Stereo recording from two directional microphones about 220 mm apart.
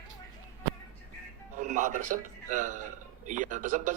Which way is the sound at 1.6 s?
35° right (ahead or behind).